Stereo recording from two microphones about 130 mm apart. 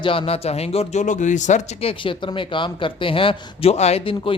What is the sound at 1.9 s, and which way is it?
Speech, 40° left (ahead or behind).